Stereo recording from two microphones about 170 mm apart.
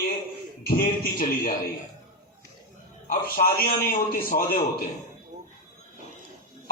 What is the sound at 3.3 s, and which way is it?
A man's voice, 60° left (ahead or behind).